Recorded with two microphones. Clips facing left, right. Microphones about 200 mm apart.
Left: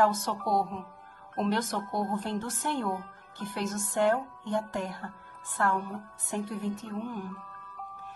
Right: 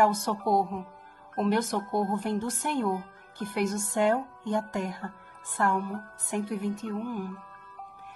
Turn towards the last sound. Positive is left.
turn(degrees=-10)  # may be behind; listen again after turning